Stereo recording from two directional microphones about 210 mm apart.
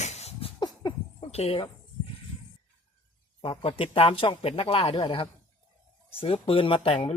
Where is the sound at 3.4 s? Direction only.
25° left (ahead or behind).